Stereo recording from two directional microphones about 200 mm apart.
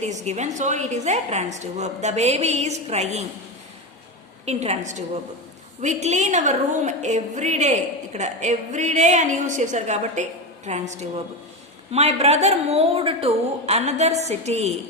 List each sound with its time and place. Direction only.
0.0 s a woman's voice: 35° right (ahead or behind)
4.4 s a woman's voice: 35° right (ahead or behind)